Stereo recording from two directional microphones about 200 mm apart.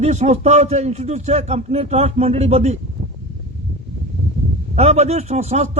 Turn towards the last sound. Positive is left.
turn(degrees=-30)  # may be behind; listen again after turning